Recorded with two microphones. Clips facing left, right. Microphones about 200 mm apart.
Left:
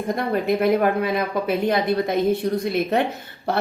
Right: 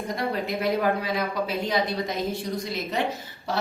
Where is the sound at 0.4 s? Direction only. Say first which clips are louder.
Left 7 dB; 55° left (ahead or behind).